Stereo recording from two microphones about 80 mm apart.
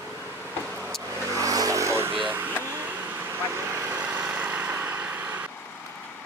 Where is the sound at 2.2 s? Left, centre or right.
Right.